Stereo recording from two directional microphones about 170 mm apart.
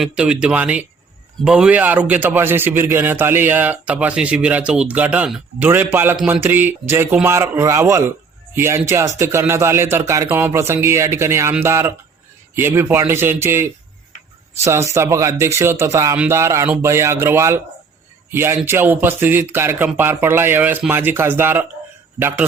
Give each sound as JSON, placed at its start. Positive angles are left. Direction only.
{"t": 0.0, "sound": "a man's voice", "side_deg": -5}